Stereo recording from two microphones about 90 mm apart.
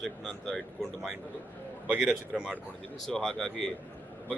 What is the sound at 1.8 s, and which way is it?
Speech, 10° right (ahead or behind).